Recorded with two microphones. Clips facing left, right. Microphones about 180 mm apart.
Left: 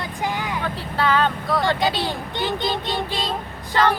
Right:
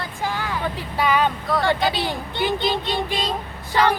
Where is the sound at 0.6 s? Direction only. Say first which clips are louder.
Right 1 dB; 15° right (ahead or behind).